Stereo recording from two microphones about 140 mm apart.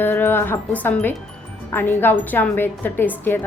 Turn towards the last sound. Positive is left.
turn(degrees=15)  # may be behind; listen again after turning